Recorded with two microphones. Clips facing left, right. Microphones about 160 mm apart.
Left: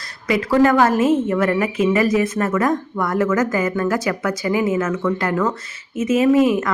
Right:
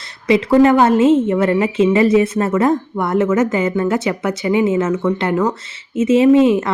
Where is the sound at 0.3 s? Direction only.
25° right (ahead or behind).